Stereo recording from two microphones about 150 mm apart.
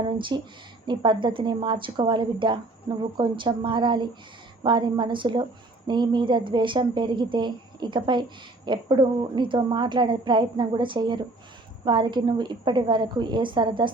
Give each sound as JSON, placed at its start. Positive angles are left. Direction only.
{"t": 0.2, "sound": "a woman's voice", "side_deg": -35}